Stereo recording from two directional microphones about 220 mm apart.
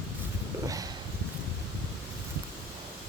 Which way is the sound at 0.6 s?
15° right (ahead or behind).